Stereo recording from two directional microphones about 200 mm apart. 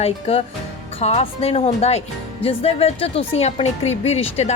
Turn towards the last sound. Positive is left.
turn(degrees=30)  # may be behind; listen again after turning